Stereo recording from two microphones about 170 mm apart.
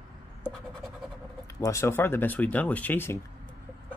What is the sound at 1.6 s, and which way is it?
Speech, 15° left (ahead or behind).